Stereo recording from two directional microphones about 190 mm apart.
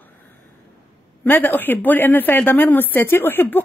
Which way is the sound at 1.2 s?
10° left (ahead or behind).